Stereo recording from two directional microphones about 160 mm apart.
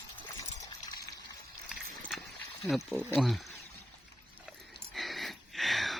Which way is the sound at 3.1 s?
Centre (ahead or behind).